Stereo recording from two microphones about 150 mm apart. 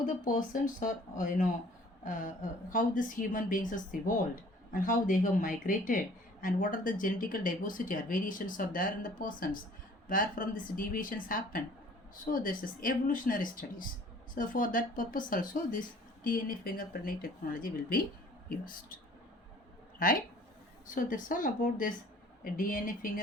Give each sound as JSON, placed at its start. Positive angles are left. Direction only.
{"t": 0.0, "sound": "speech", "side_deg": 60}
{"t": 20.9, "sound": "speech", "side_deg": 65}